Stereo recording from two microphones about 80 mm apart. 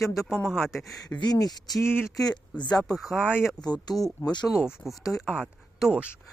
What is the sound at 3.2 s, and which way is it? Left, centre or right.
Speech, centre.